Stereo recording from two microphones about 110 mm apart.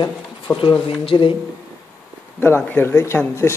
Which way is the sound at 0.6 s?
50° left (ahead or behind).